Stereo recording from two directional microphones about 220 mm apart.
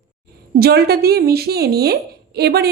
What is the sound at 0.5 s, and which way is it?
Speech, 45° right (ahead or behind).